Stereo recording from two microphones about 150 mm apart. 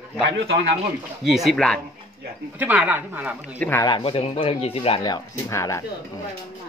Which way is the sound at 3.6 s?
15° left (ahead or behind).